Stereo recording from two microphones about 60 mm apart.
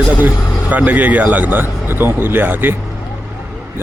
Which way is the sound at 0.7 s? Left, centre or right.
Right.